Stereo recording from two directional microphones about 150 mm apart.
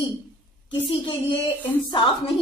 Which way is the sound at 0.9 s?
35° left (ahead or behind).